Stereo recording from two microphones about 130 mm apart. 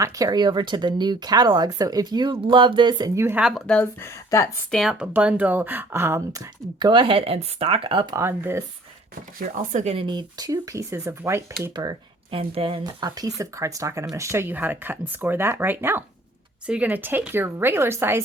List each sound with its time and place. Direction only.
0.0 s speech: 30° right (ahead or behind)
3.2 s speech: 20° right (ahead or behind)
3.7 s speech: 10° left (ahead or behind)
4.3 s speech: 25° left (ahead or behind)
4.7 s speech: centre (ahead or behind)
5.1 s speech: 10° right (ahead or behind); by 8.1 s 40° right (ahead or behind)
8.1 s speech: 15° right (ahead or behind)
9.7 s speech: 60° right (ahead or behind)
10.0 s speech: 35° right (ahead or behind)
11.7 s speech: 30° right (ahead or behind)
12.4 s speech: 45° right (ahead or behind)
12.8 s speech: 30° right (ahead or behind)